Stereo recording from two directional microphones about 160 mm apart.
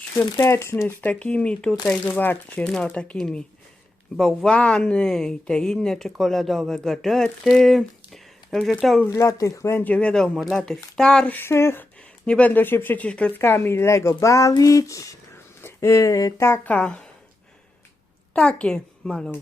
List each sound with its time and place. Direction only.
0.3 s speech: 15° left (ahead or behind); by 9.0 s centre (ahead or behind)
9.0 s speech: 20° left (ahead or behind)
18.3 s speech: 5° left (ahead or behind)